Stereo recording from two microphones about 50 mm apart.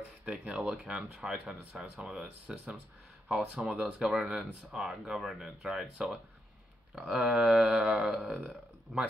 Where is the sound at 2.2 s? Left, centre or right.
Right.